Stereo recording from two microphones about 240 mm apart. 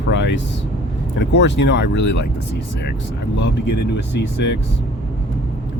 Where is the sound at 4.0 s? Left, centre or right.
Left.